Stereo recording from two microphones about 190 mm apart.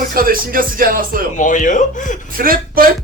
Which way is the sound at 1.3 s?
40° left (ahead or behind).